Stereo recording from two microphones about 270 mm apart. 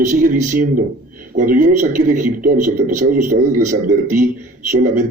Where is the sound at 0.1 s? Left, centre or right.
Right.